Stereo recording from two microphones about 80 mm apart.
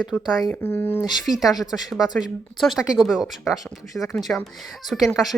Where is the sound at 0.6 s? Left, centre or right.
Left.